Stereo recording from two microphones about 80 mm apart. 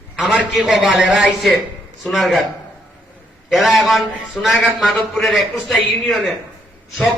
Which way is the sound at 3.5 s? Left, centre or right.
Centre.